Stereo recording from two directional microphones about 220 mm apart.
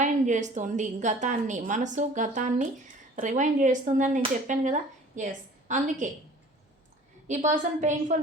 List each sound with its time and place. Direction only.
0.0 s speech: 35° right (ahead or behind)
7.3 s speech: 35° right (ahead or behind)